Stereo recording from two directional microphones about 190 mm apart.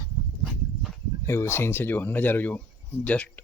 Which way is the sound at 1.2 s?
15° left (ahead or behind).